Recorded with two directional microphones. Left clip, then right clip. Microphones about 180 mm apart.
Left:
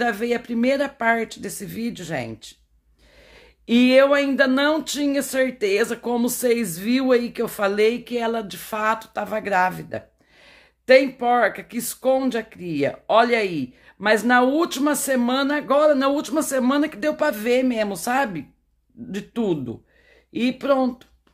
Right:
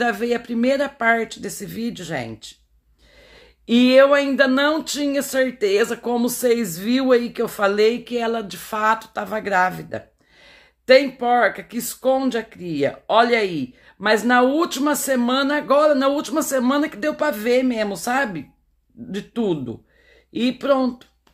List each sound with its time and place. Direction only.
0.0 s speech: 5° left (ahead or behind)